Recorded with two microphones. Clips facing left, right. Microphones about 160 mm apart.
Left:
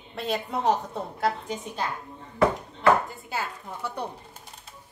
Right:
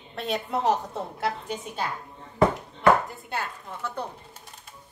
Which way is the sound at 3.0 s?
Centre (ahead or behind).